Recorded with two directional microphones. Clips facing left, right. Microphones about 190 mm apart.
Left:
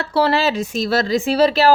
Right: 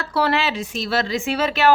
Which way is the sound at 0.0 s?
30° left (ahead or behind).